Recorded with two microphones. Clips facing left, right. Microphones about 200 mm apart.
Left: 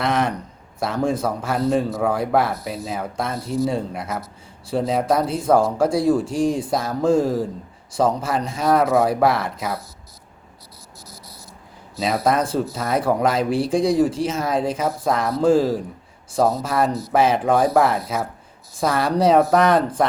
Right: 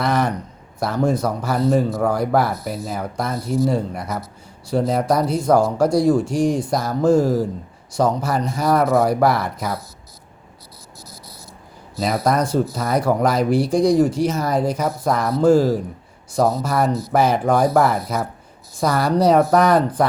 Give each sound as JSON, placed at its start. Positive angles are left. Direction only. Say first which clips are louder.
{"t": 0.0, "sound": "a man's voice", "louder": "right 1 dB", "side_deg": 0}
{"t": 6.2, "sound": "speech", "louder": "right 2 dB", "side_deg": 30}
{"t": 6.7, "sound": "speech", "louder": "right 2 dB", "side_deg": 0}
{"t": 8.4, "sound": "speech", "louder": "even", "side_deg": 0}
{"t": 11.9, "sound": "speech", "louder": "right 1 dB", "side_deg": 0}